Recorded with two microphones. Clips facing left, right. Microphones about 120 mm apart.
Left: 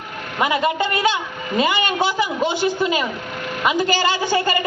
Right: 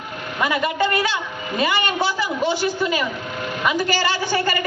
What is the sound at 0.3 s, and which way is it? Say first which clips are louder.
A woman's voice: left 2 dB; 20° left (ahead or behind).